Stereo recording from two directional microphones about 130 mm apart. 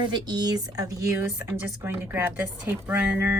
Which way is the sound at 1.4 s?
15° right (ahead or behind).